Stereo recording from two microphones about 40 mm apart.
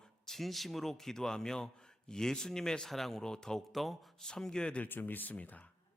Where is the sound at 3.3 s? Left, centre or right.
Centre.